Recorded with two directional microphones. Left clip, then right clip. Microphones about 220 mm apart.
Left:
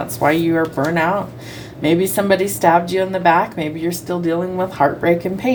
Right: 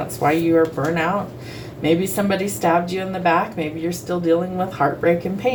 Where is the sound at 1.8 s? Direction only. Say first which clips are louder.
Left 3 dB; 55° left (ahead or behind).